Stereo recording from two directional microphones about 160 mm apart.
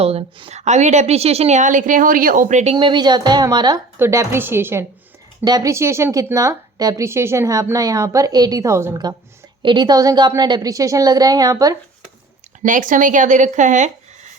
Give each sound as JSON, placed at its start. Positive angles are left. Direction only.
{"t": 0.0, "sound": "a woman's voice", "side_deg": -40}
{"t": 2.7, "sound": "a woman's voice", "side_deg": -30}
{"t": 12.6, "sound": "speech", "side_deg": -55}